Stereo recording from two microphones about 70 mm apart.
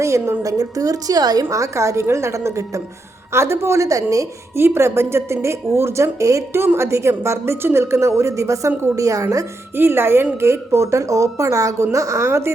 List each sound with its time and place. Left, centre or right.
0.0 s a woman's voice: right
1.5 s a woman's voice: right
4.5 s a woman's voice: right
9.7 s a woman's voice: right